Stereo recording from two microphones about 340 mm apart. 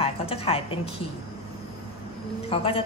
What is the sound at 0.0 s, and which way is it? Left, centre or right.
Music, centre.